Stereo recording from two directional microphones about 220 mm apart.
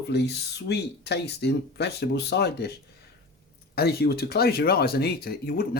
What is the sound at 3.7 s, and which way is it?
Speech, 45° left (ahead or behind).